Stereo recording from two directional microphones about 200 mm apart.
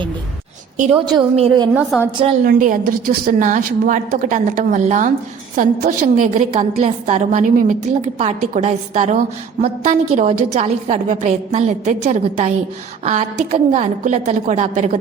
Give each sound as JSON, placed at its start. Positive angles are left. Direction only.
{"t": 1.1, "sound": "a woman's voice", "side_deg": -20}
{"t": 1.7, "sound": "a woman's voice", "side_deg": -5}
{"t": 2.4, "sound": "a woman's voice", "side_deg": -45}